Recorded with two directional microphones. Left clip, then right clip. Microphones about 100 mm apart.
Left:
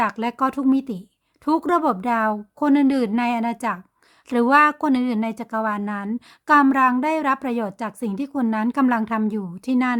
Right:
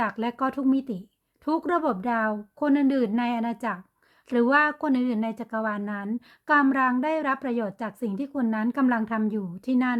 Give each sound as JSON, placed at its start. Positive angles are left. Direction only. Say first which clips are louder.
{"t": 0.0, "sound": "a woman's voice", "louder": "left 5 dB", "side_deg": 35}